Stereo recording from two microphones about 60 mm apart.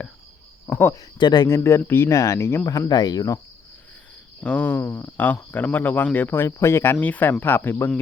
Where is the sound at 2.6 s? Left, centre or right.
Left.